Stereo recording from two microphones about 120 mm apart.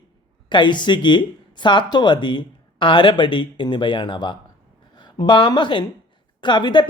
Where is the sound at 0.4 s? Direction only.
40° left (ahead or behind).